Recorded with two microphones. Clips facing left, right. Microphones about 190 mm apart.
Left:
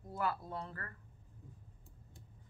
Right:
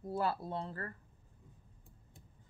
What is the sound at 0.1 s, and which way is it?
Speech, 30° right (ahead or behind).